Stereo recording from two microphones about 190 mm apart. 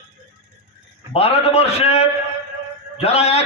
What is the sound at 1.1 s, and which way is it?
A man's voice, 30° left (ahead or behind).